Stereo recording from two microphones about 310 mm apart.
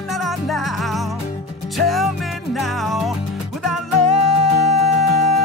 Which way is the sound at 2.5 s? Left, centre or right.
Centre.